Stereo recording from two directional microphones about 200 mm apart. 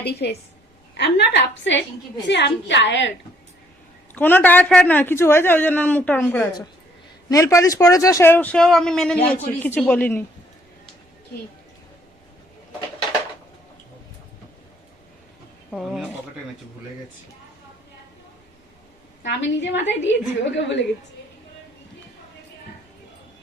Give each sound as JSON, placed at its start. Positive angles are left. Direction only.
{"t": 0.0, "sound": "a woman's voice", "side_deg": 55}
{"t": 4.1, "sound": "speech", "side_deg": 10}
{"t": 15.7, "sound": "speech", "side_deg": 0}
{"t": 19.2, "sound": "a woman's voice", "side_deg": 65}